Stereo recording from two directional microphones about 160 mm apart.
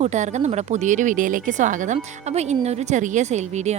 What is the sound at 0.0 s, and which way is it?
Speech, 45° right (ahead or behind).